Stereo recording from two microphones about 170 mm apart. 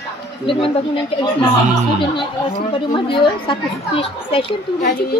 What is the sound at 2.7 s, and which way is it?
A woman's voice, 30° left (ahead or behind).